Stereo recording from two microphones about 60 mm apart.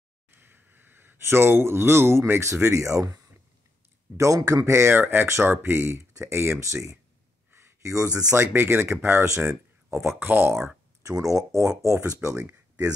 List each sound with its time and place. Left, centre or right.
0.3 s speech: right
2.9 s speech: right
4.2 s speech: right
4.6 s speech: right
4.9 s speech: right
7.5 s a sound: right
7.9 s speech: right
8.3 s speech: right
10.0 s speech: right
11.1 s speech: right
12.4 s a sound: right